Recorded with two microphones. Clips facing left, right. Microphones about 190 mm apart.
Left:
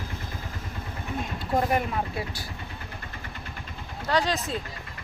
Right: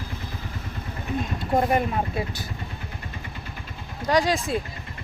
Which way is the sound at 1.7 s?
20° right (ahead or behind).